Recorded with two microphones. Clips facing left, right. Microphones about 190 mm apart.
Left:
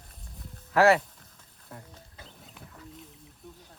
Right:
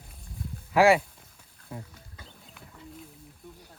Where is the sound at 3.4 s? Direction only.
Centre (ahead or behind).